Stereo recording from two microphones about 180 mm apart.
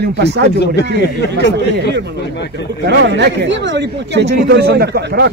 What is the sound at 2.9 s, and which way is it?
A man's voice, 75° right (ahead or behind).